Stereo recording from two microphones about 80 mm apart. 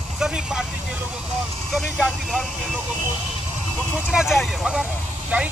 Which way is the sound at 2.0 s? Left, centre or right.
Centre.